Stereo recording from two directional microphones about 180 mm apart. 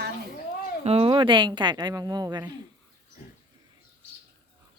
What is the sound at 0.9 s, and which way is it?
Speech, 30° right (ahead or behind).